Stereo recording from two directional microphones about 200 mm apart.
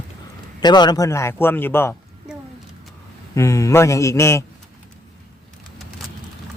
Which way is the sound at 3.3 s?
15° left (ahead or behind).